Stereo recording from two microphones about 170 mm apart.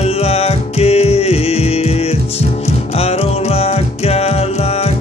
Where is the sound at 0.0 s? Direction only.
35° left (ahead or behind).